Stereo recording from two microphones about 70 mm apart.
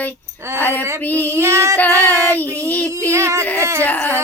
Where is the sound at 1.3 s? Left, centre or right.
Right.